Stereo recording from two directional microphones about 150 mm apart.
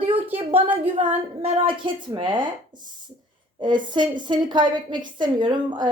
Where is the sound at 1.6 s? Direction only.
35° right (ahead or behind).